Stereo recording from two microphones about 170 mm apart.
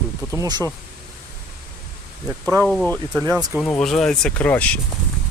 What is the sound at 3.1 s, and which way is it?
Speech, 10° right (ahead or behind).